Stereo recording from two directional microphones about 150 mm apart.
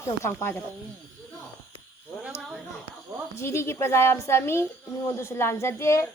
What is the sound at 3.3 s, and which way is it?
Speech, 20° left (ahead or behind).